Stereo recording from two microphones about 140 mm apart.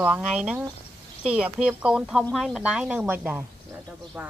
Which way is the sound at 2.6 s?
5° right (ahead or behind).